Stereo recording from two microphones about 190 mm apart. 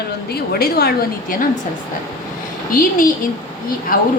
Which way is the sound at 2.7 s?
50° left (ahead or behind).